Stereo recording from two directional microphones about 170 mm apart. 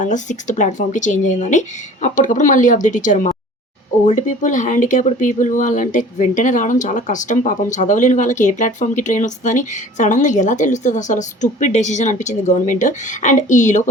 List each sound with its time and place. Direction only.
0.0 s speech: 45° left (ahead or behind)